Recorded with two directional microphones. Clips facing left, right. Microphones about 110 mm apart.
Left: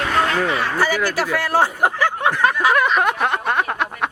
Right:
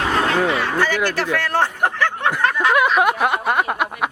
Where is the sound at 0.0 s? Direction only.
30° right (ahead or behind).